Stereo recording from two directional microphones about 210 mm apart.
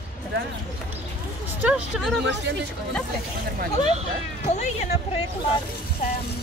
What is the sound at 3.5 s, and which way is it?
Speech, 30° right (ahead or behind).